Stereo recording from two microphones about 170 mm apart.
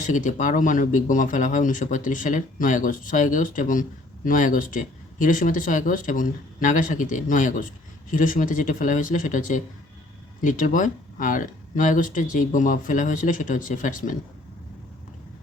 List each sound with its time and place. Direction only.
0.0 s speech: 50° left (ahead or behind)